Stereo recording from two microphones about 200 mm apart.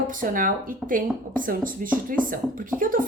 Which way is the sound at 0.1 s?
40° right (ahead or behind).